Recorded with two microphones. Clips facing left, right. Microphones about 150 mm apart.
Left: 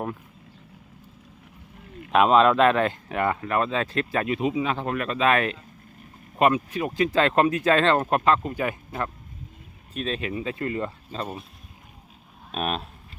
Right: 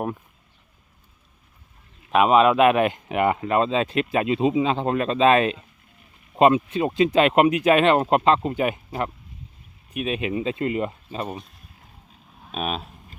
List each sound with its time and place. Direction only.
2.1 s speech: 5° right (ahead or behind)
12.5 s speech: centre (ahead or behind)